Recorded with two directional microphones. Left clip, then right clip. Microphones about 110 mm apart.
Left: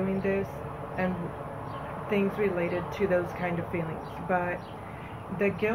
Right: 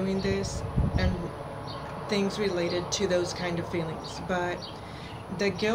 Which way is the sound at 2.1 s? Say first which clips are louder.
Left 1 dB; 40° right (ahead or behind).